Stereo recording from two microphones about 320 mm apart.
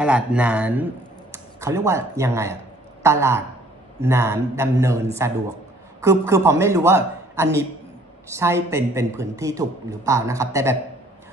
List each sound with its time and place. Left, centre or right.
0.0 s a man's voice: centre